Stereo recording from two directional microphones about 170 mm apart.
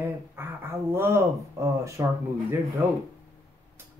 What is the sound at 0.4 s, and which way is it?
Speech, 15° right (ahead or behind).